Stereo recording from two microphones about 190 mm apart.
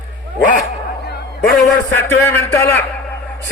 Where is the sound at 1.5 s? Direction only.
Centre (ahead or behind).